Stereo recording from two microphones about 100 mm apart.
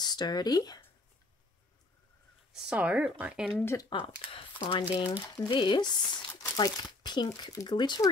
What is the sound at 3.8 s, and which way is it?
Speech, 60° left (ahead or behind).